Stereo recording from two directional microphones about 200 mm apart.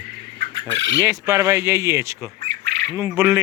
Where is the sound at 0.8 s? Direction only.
70° right (ahead or behind).